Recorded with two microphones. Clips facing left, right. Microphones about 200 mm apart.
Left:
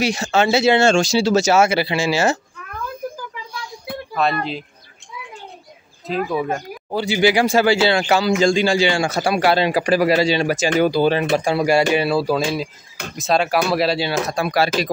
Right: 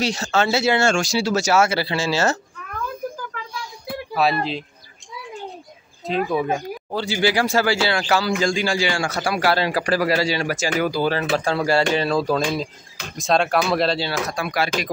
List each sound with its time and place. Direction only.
0.0 s speech: 10° left (ahead or behind)
4.1 s speech: 5° right (ahead or behind)
6.0 s speech: centre (ahead or behind)
6.9 s a man's voice: 15° left (ahead or behind)
14.1 s speech: 30° left (ahead or behind)